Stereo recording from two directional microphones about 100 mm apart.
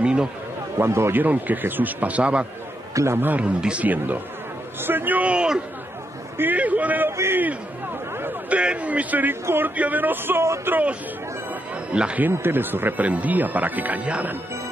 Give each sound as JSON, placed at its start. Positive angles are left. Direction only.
{"t": 0.0, "sound": "a sound", "side_deg": -10}
{"t": 0.7, "sound": "speech", "side_deg": -25}
{"t": 2.9, "sound": "a man's voice", "side_deg": -30}
{"t": 3.2, "sound": "a man's voice", "side_deg": -15}
{"t": 12.3, "sound": "speech", "side_deg": -20}